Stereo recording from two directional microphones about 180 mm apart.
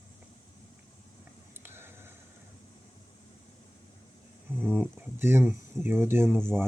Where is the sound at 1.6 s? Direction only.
10° right (ahead or behind).